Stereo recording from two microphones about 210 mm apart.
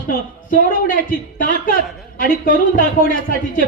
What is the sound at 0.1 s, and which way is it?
A man's voice, 40° left (ahead or behind).